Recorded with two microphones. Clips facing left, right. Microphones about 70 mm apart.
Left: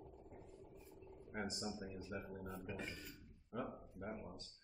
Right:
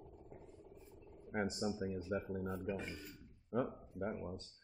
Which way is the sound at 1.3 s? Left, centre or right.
Right.